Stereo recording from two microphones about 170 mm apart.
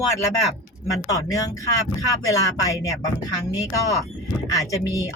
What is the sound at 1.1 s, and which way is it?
Speech, 20° left (ahead or behind).